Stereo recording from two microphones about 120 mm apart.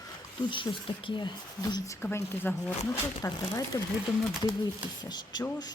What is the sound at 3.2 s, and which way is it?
Speech, 30° left (ahead or behind).